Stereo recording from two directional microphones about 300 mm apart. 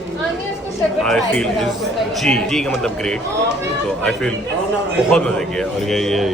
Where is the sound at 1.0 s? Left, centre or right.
Centre.